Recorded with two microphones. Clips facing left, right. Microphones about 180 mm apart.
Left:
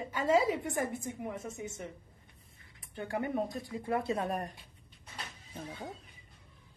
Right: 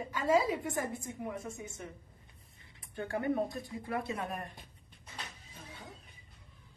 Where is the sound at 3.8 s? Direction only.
30° left (ahead or behind).